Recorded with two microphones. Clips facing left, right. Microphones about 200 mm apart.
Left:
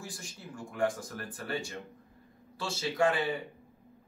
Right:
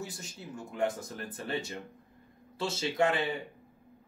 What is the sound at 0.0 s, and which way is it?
Speech, 20° right (ahead or behind).